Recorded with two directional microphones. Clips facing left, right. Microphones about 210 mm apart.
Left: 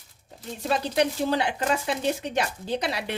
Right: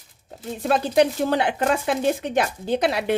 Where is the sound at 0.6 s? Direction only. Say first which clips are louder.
Right 5 dB; 55° right (ahead or behind).